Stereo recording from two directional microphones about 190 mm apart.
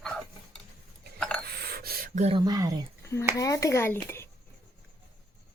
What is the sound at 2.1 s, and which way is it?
Speech, 35° right (ahead or behind).